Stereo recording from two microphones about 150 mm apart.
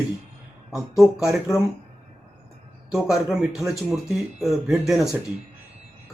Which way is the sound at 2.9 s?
5° right (ahead or behind).